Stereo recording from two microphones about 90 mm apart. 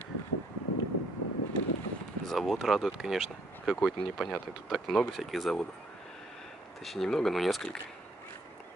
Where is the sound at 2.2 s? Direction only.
Centre (ahead or behind).